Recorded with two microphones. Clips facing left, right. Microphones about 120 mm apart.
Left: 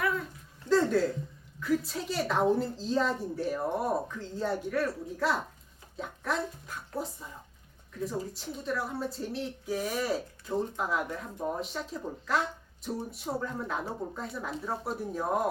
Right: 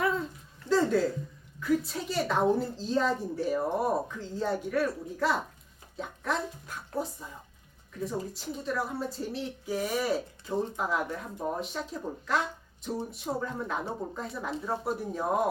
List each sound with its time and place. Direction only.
0.0 s dog: 25° right (ahead or behind)
0.7 s a sound: centre (ahead or behind)
1.5 s a woman's voice: centre (ahead or behind)